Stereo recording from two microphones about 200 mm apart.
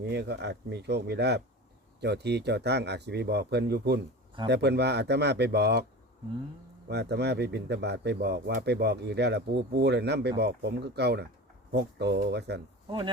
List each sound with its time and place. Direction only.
0.0 s speech: 55° right (ahead or behind)
6.8 s speech: 55° right (ahead or behind)